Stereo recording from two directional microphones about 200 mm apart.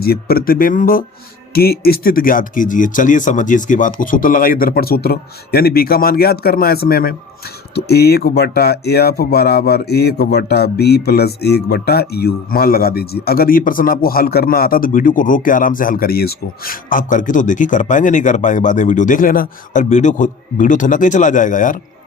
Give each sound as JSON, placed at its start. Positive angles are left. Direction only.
{"t": 0.0, "sound": "speech", "side_deg": 50}